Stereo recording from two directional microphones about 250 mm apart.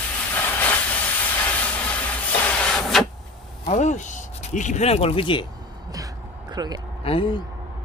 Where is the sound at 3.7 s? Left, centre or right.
Left.